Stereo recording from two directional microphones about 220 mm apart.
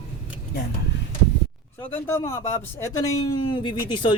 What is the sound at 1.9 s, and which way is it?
Speech, 10° left (ahead or behind).